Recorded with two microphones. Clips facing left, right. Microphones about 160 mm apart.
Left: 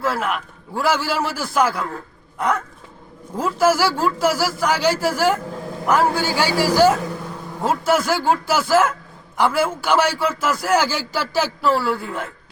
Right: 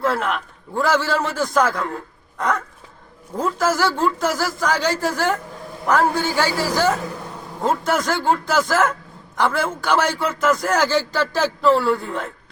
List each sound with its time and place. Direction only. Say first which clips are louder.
0.0 s a man's voice: right 1 dB; 5° left (ahead or behind)
3.3 s a man's voice: left 3 dB; 10° left (ahead or behind)